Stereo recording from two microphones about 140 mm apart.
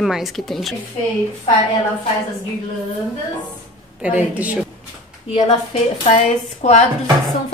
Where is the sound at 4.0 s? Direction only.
10° right (ahead or behind).